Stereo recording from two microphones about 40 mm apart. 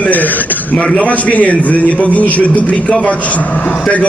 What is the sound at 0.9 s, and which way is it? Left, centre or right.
A man's voice, left.